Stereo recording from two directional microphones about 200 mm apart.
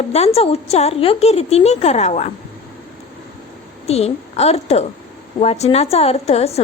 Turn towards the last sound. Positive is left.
turn(degrees=30)  # may be behind; listen again after turning